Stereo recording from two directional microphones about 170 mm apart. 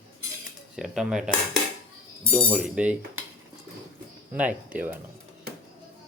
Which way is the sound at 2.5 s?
5° right (ahead or behind).